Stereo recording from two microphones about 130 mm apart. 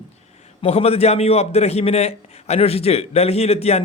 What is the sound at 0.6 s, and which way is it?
A man's voice, 50° left (ahead or behind).